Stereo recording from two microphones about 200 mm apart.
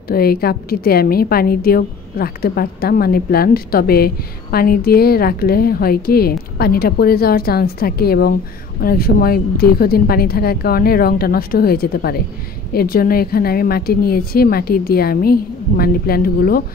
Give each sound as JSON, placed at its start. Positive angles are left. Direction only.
{"t": 0.1, "sound": "a woman's voice", "side_deg": 50}